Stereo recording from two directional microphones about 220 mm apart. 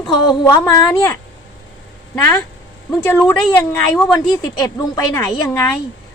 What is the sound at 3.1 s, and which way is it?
A woman's voice, 10° left (ahead or behind).